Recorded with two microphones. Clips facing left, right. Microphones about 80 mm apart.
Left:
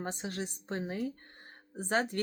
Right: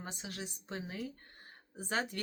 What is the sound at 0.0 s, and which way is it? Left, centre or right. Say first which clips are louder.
Speech: left 7 dB; left.